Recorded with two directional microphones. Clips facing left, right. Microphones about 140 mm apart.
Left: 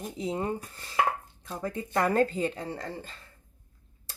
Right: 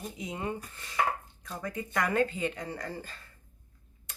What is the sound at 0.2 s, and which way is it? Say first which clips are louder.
Speech: left 6 dB; 30° left (ahead or behind).